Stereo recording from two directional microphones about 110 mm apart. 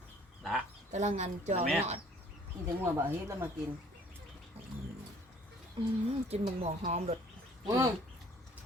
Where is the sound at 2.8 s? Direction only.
20° right (ahead or behind).